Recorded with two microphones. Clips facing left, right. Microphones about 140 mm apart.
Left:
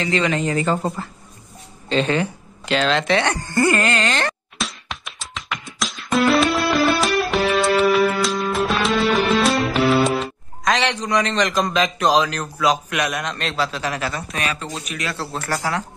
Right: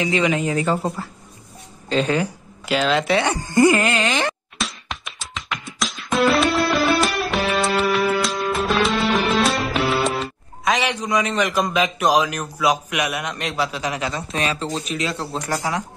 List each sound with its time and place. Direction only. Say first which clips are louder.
0.0 s a man's voice: right 1 dB; 10° right (ahead or behind)
4.6 s music: even; centre (ahead or behind)
12.9 s a man's voice: left 1 dB; 10° right (ahead or behind)